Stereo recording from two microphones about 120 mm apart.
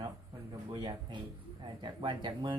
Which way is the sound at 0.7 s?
40° right (ahead or behind).